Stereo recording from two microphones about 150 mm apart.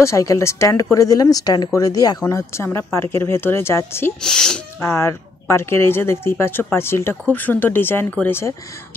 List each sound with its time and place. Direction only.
0.0 s speech: 20° left (ahead or behind)
4.2 s speech: 5° left (ahead or behind)
4.7 s speech: 15° left (ahead or behind)